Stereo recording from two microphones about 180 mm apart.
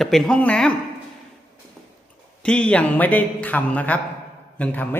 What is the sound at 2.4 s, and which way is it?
A man's voice, 5° left (ahead or behind).